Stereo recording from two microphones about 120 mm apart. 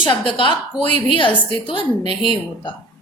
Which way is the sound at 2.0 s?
55° right (ahead or behind).